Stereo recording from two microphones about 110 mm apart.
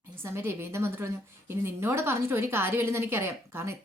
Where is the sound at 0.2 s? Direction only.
20° right (ahead or behind).